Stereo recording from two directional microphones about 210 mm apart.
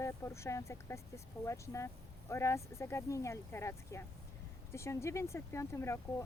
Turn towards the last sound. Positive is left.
turn(degrees=15)  # may be behind; listen again after turning